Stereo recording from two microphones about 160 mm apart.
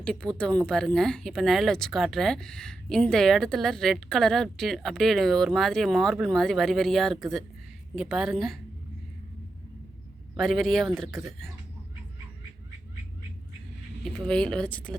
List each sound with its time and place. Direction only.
0.0 s speech: 5° left (ahead or behind)
10.3 s speech: centre (ahead or behind)
14.0 s speech: 5° left (ahead or behind)